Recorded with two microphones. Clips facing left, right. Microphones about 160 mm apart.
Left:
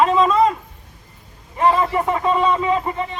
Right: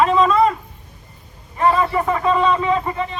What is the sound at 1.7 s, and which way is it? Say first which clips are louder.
Speech: even; 15° left (ahead or behind).